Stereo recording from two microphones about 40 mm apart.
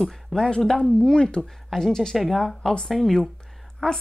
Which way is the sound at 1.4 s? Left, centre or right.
Centre.